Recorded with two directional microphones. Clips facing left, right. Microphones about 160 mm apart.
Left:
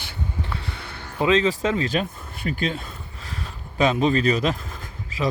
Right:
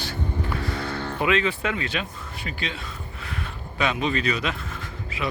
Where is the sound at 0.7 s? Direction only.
60° right (ahead or behind).